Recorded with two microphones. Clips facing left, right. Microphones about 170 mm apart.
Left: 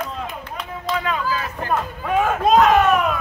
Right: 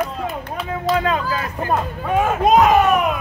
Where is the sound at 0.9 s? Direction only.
45° right (ahead or behind).